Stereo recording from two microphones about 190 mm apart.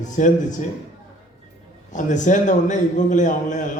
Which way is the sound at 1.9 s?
40° left (ahead or behind).